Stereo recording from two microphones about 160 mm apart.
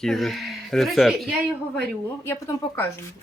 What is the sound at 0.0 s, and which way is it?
Speech, centre (ahead or behind).